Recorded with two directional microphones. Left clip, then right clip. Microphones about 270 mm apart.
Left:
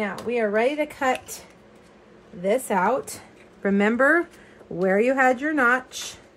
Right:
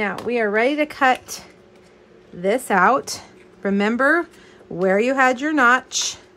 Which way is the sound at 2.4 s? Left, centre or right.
Right.